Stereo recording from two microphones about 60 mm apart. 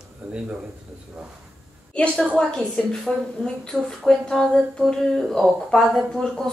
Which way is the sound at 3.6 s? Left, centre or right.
Centre.